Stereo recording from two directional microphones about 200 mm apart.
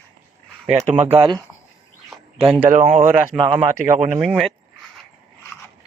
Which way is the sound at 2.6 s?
45° right (ahead or behind).